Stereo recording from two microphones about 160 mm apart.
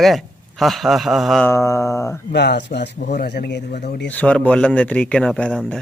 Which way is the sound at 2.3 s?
90° left.